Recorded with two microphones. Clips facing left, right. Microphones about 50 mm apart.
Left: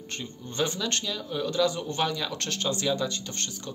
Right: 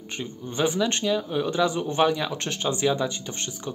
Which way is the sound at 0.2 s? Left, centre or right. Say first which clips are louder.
Right 4 dB; centre.